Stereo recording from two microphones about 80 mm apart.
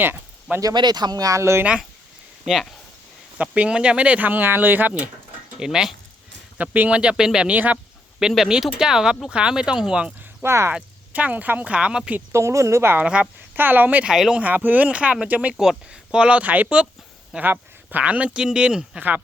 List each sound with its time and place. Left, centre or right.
0.6 s speech: right
1.4 s a woman's voice: right
2.4 s speech: centre
3.3 s speech: centre
5.5 s speech: centre
6.6 s speech: centre
10.4 s a woman's voice: right
10.8 s speech: centre
12.3 s a woman's voice: right
13.0 s speech: centre
14.1 s speech: centre
14.4 s speech: right